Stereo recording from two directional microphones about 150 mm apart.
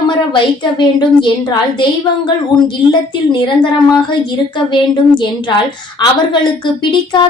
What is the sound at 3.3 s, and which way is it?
Speech, 30° left (ahead or behind).